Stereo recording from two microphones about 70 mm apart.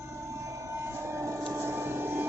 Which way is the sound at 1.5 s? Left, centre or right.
Right.